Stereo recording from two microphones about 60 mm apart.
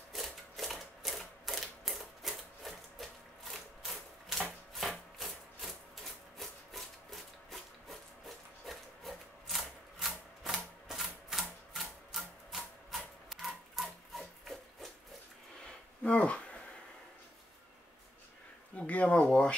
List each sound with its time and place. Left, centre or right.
0.1 s typewriter: centre
4.7 s wood: centre
6.3 s sawing: centre
8.6 s wood: centre
11.7 s rub: centre
15.6 s a sound: centre
18.8 s speech: left